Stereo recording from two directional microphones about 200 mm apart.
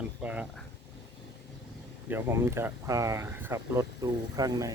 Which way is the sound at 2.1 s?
10° right (ahead or behind).